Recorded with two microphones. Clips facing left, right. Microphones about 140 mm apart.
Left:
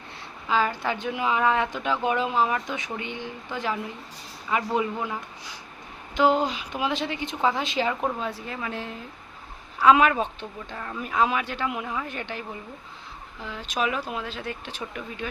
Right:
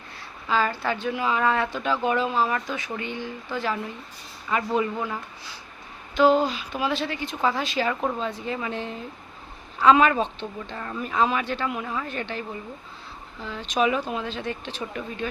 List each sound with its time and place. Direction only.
0.4 s a woman's voice: 15° left (ahead or behind)